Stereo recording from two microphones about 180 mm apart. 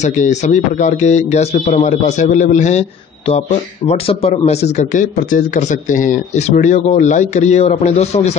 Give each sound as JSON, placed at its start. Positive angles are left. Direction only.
{"t": 0.0, "sound": "a man's voice", "side_deg": 40}